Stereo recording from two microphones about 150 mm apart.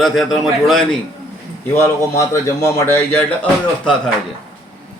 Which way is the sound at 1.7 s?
20° left (ahead or behind).